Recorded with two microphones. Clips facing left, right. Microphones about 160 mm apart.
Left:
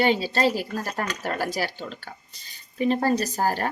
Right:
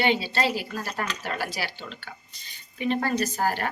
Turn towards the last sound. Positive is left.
turn(degrees=35)  # may be behind; listen again after turning